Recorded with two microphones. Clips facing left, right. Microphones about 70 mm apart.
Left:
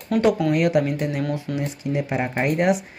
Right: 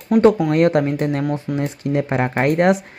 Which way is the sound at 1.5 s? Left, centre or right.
Centre.